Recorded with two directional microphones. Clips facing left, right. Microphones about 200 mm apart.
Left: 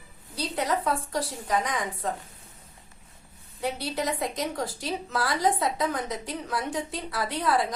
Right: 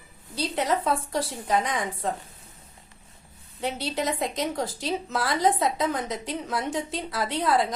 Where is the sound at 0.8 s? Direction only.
25° right (ahead or behind).